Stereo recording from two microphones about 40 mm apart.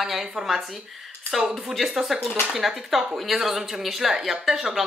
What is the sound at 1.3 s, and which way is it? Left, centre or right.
Speech, centre.